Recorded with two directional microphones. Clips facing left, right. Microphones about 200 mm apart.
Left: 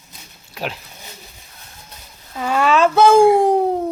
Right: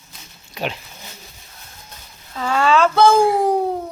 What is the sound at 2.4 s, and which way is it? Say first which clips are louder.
Speech: left 1 dB; 15° left (ahead or behind).